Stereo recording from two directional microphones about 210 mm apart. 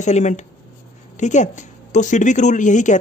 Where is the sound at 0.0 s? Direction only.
35° left (ahead or behind).